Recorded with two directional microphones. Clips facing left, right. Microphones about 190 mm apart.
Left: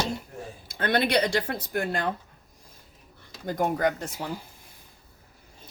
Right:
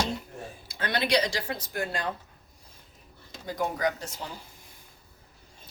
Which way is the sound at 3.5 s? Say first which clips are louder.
Left 4 dB; 50° left (ahead or behind).